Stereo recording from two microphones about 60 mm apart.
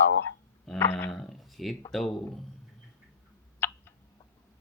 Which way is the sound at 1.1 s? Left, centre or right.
Centre.